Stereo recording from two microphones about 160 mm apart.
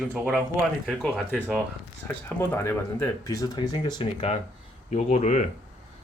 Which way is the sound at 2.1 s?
15° left (ahead or behind).